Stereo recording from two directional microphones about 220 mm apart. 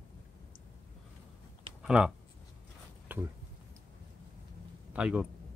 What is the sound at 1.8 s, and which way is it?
Speech, 5° right (ahead or behind).